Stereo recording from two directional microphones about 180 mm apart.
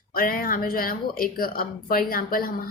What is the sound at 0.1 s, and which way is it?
Speech, 55° left (ahead or behind).